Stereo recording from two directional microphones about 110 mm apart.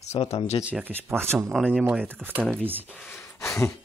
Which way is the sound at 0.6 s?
15° right (ahead or behind).